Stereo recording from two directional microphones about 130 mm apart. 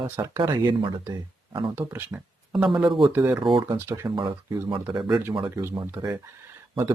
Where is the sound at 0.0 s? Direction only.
25° right (ahead or behind).